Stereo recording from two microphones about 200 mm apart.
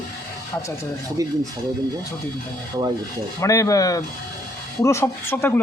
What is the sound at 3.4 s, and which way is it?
A man's voice, 15° left (ahead or behind).